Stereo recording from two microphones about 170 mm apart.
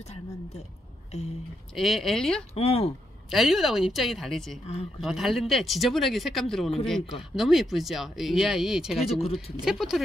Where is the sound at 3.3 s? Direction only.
Centre (ahead or behind).